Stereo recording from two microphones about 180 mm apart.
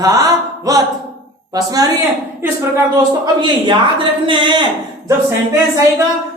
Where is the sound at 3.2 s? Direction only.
25° right (ahead or behind).